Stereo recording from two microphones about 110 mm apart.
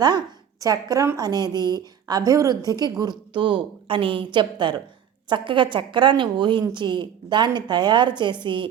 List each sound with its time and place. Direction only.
0.6 s a woman's voice: 35° right (ahead or behind)